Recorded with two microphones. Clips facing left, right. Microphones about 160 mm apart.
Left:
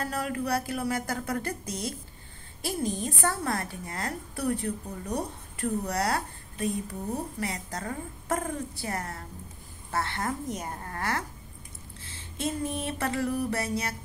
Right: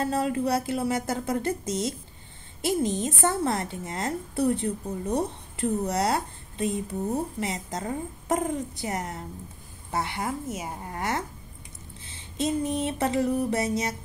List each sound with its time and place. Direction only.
0.0 s a woman's voice: 25° right (ahead or behind)